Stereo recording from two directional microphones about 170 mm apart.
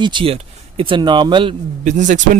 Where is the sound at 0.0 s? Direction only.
30° right (ahead or behind).